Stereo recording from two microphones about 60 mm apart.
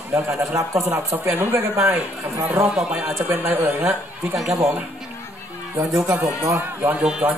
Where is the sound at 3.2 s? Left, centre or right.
Right.